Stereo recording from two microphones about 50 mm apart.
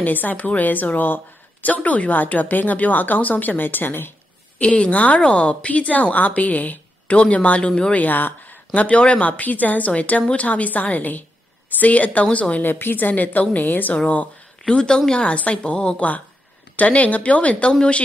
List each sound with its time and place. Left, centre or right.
0.0 s a woman's voice: left
4.6 s a woman's voice: left
8.0 s speech: left
9.4 s a woman's voice: left
12.6 s a woman's voice: left
14.7 s a woman's voice: centre